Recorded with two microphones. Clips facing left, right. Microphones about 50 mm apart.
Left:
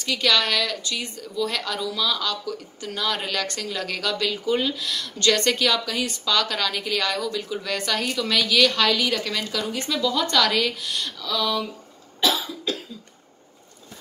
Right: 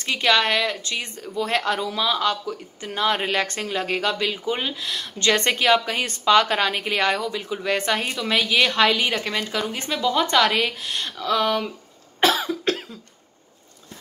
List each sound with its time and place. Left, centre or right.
0.0 s a woman's voice: right
12.2 s cough: right